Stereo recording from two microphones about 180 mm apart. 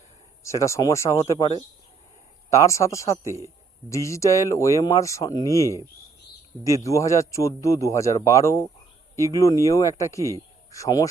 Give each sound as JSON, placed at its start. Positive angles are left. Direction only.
{"t": 0.4, "sound": "speech", "side_deg": 15}